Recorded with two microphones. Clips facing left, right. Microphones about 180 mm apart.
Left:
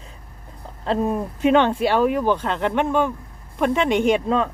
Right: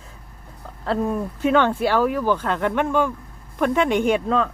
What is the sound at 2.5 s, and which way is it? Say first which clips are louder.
Speech: even; 5° right (ahead or behind).